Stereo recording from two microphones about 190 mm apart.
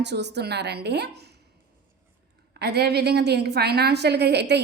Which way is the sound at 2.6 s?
60° right (ahead or behind).